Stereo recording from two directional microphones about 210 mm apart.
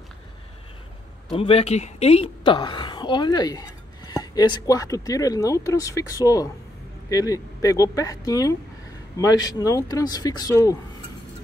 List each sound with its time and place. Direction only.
1.3 s a woman's voice: 25° left (ahead or behind)